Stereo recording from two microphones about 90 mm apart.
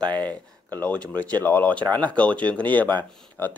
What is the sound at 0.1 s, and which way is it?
Speech, 15° left (ahead or behind).